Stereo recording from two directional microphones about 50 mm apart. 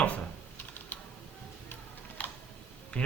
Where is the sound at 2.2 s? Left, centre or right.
Left.